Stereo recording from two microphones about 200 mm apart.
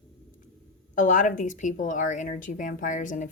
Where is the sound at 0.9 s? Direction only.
40° left (ahead or behind).